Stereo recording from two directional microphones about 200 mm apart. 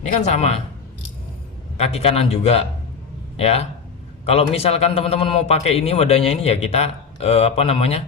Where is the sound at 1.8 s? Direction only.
30° left (ahead or behind).